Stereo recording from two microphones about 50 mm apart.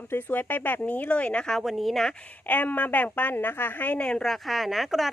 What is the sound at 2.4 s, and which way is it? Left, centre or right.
A woman's voice, left.